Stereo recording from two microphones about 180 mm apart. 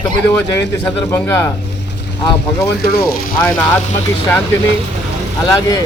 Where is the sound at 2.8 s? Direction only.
60° left (ahead or behind).